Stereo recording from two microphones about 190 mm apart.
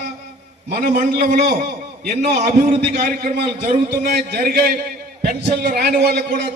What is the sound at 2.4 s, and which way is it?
A man's voice, 40° right (ahead or behind).